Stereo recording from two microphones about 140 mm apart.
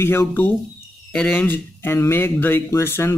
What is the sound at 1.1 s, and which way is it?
Speech, 10° left (ahead or behind).